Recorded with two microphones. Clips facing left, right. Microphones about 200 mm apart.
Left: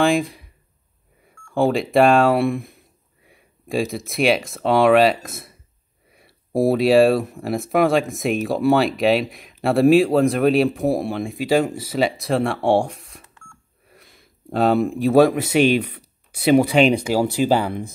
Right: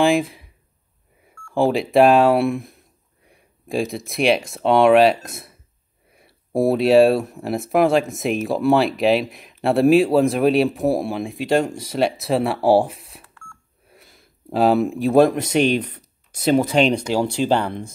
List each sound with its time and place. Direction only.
0.0 s speech: centre (ahead or behind)
1.5 s speech: centre (ahead or behind)
13.2 s beep: 20° left (ahead or behind)
13.8 s speech: centre (ahead or behind)